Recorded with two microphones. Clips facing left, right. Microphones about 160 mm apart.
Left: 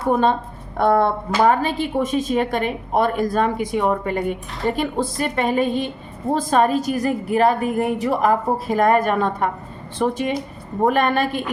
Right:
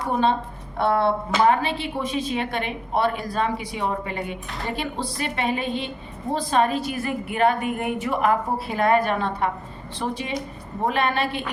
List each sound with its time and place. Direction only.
0.1 s a woman's voice: 50° left (ahead or behind)